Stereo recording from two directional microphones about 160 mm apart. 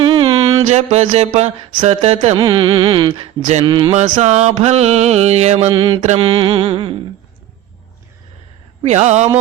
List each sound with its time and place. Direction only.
0.0 s mantra: 35° right (ahead or behind)
1.8 s music: 40° right (ahead or behind)
2.4 s carnatic music: 30° right (ahead or behind)
4.2 s mantra: 45° right (ahead or behind)
6.1 s music: 35° right (ahead or behind)
8.8 s mantra: 45° right (ahead or behind)